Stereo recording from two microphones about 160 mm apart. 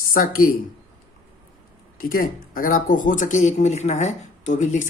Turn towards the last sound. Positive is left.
turn(degrees=50)  # may be behind; listen again after turning